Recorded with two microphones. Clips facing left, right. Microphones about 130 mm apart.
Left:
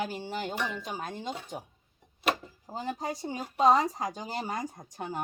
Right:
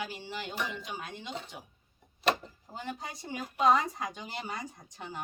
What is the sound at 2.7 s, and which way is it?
Speech, 35° left (ahead or behind).